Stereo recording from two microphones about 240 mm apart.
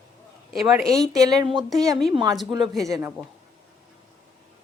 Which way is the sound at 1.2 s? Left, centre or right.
Centre.